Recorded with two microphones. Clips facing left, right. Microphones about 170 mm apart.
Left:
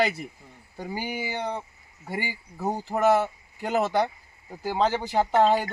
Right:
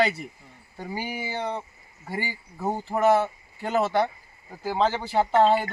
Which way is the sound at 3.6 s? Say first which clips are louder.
Right 1 dB; 15° left (ahead or behind).